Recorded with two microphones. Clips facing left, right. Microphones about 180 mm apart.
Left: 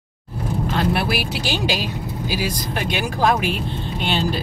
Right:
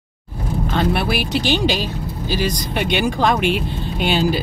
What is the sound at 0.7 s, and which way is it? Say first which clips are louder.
Speech: right 2 dB; centre (ahead or behind).